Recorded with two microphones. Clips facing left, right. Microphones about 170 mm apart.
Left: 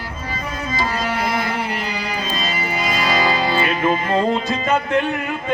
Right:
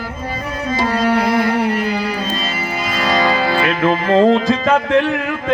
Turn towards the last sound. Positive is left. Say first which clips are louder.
# right 5 dB
turn(degrees=-85)